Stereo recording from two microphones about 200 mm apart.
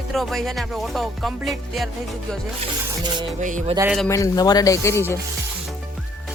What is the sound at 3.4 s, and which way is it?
Speech, 40° right (ahead or behind).